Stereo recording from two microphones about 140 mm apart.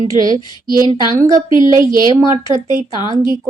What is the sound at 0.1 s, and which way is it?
Speech, 25° right (ahead or behind).